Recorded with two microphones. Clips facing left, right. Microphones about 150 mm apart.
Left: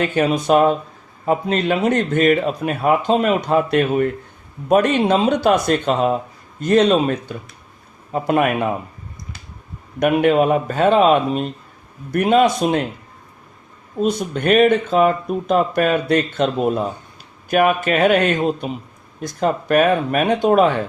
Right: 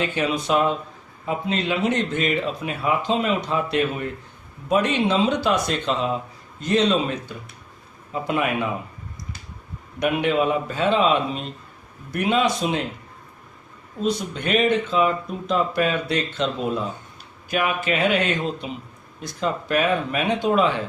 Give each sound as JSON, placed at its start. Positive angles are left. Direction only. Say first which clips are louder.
{"t": 0.0, "sound": "a man's voice", "louder": "left 6 dB", "side_deg": 45}
{"t": 10.0, "sound": "a man's voice", "louder": "left 6 dB", "side_deg": 50}
{"t": 14.0, "sound": "a man's voice", "louder": "left 5 dB", "side_deg": 50}